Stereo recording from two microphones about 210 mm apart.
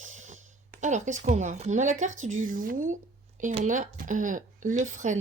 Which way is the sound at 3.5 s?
35° right (ahead or behind).